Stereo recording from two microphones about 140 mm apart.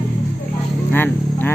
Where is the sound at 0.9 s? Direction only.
15° left (ahead or behind).